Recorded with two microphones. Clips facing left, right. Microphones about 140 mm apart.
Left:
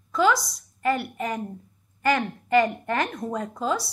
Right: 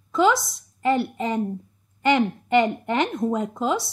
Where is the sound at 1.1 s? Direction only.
25° right (ahead or behind).